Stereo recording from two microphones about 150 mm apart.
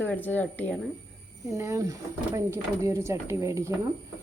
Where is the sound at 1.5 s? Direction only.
20° right (ahead or behind).